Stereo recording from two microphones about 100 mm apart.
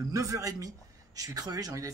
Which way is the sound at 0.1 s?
35° right (ahead or behind).